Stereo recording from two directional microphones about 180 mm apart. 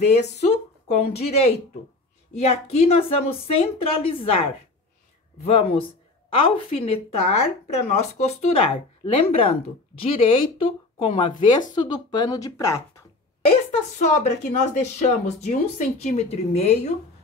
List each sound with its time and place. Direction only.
0.4 s a woman's voice: 35° left (ahead or behind); by 13.0 s 15° left (ahead or behind)
13.4 s a woman's voice: 35° left (ahead or behind)